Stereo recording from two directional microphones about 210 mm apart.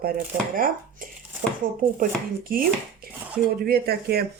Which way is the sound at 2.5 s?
45° right (ahead or behind).